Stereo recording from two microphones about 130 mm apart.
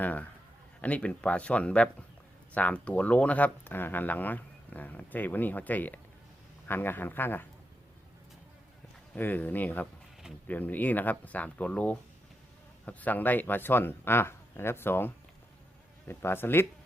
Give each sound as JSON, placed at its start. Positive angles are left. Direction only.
{"t": 0.0, "sound": "speech", "side_deg": 10}
{"t": 9.1, "sound": "speech", "side_deg": 15}